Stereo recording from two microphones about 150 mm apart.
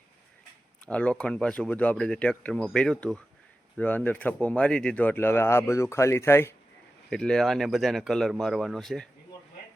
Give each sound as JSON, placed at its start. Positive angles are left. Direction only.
{"t": 0.9, "sound": "speech", "side_deg": 10}
{"t": 7.1, "sound": "speech", "side_deg": 5}